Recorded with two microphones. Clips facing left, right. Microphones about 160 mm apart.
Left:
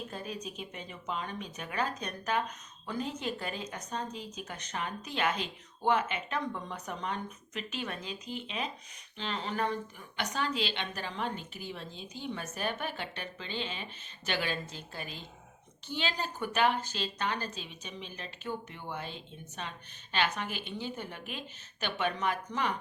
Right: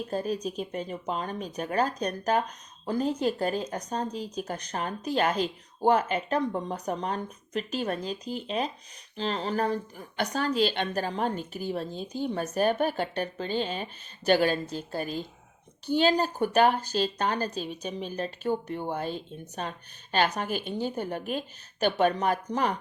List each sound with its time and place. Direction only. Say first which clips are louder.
0.1 s speech: right 10 dB; 40° right (ahead or behind)